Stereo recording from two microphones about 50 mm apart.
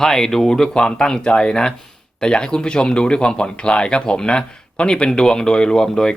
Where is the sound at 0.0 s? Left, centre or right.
Centre.